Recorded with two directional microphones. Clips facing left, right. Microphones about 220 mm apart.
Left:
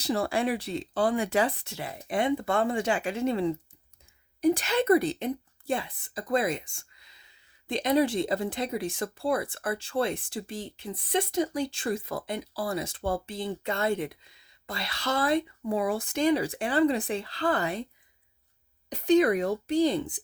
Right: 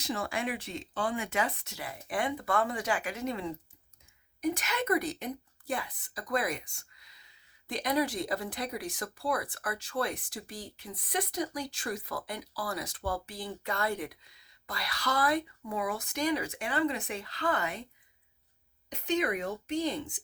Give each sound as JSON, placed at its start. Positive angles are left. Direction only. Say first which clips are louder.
{"t": 0.0, "sound": "a woman's voice", "louder": "left 7 dB", "side_deg": 35}
{"t": 18.9, "sound": "speech", "louder": "left 9 dB", "side_deg": 35}